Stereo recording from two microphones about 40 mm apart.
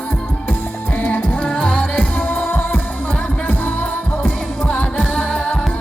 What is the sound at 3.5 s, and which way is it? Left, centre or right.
Music, left.